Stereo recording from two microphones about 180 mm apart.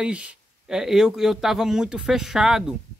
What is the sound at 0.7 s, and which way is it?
Speech, 5° right (ahead or behind).